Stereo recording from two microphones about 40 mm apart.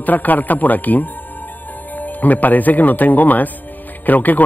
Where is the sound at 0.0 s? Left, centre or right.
Left.